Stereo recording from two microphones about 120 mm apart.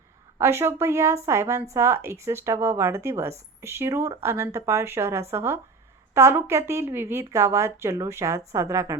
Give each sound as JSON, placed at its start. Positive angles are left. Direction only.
{"t": 0.3, "sound": "a woman's voice", "side_deg": -20}